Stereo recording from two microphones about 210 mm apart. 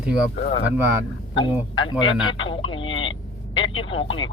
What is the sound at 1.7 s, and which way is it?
Speech, 25° left (ahead or behind).